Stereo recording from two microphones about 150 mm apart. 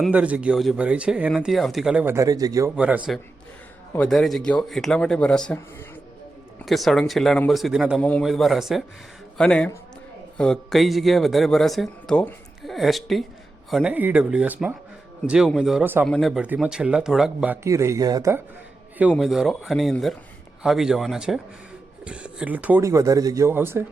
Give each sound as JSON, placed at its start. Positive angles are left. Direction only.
{"t": 0.0, "sound": "speech", "side_deg": -10}
{"t": 2.1, "sound": "a man's voice", "side_deg": -25}
{"t": 2.7, "sound": "speech", "side_deg": -10}
{"t": 3.9, "sound": "a man's voice", "side_deg": 5}
{"t": 6.7, "sound": "a man's voice", "side_deg": 0}
{"t": 19.1, "sound": "a man's voice", "side_deg": 0}